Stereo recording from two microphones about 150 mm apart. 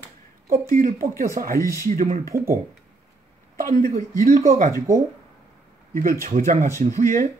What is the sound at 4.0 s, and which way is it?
Speech, 70° right (ahead or behind).